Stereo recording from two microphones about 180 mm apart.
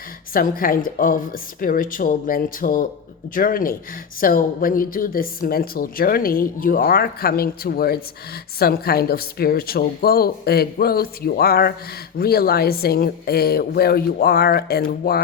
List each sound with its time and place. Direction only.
0.3 s speech: 50° left (ahead or behind)